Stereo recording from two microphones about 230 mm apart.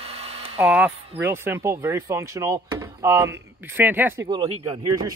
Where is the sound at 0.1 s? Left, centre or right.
Right.